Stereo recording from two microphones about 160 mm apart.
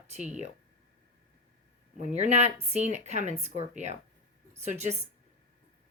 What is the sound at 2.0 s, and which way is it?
Speech, 45° right (ahead or behind).